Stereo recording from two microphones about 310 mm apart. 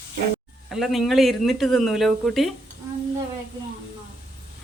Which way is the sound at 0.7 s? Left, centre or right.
Centre.